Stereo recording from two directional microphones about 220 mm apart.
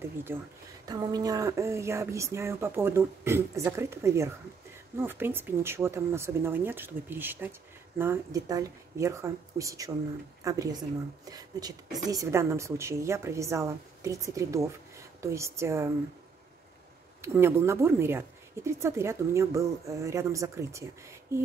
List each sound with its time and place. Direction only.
0.3 s a woman's voice: 10° right (ahead or behind)
17.2 s a woman's voice: 10° right (ahead or behind)